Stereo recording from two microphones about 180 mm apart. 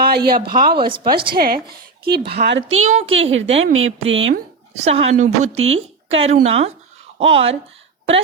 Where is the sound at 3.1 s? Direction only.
90° right.